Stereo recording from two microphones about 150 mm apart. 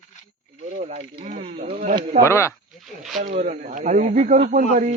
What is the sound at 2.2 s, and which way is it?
Speech, 20° left (ahead or behind).